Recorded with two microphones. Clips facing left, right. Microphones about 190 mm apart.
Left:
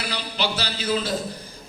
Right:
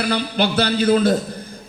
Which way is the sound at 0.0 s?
55° right (ahead or behind).